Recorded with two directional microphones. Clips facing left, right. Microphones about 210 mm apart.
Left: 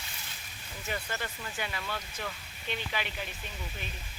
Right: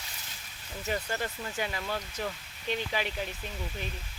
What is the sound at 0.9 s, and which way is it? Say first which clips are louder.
Speech: right 4 dB; 35° right (ahead or behind).